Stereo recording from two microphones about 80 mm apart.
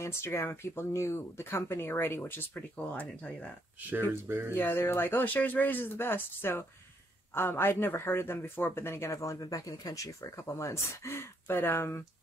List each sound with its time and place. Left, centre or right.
0.0 s speech: left
2.9 s speech: centre
4.1 s speech: right
4.6 s speech: left